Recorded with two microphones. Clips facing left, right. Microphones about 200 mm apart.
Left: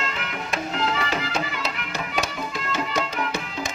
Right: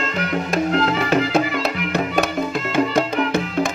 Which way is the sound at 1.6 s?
55° right (ahead or behind).